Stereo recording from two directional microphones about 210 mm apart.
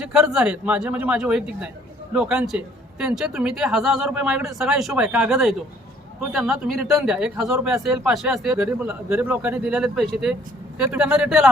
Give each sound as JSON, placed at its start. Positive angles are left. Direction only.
{"t": 0.0, "sound": "speech", "side_deg": -5}